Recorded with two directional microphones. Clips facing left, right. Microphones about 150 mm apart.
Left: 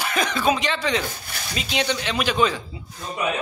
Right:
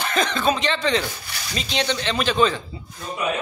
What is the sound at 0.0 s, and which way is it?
Speech, 10° left (ahead or behind).